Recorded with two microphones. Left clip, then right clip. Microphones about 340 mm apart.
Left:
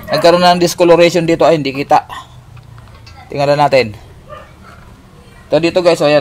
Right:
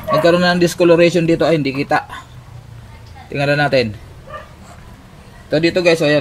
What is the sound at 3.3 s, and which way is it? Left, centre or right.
Speech, centre.